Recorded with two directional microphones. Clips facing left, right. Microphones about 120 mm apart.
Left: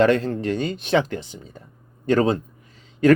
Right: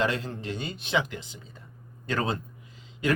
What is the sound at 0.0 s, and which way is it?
A man's voice, 55° left (ahead or behind).